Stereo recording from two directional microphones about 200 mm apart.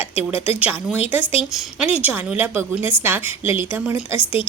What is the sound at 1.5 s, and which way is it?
A woman's voice, 5° right (ahead or behind).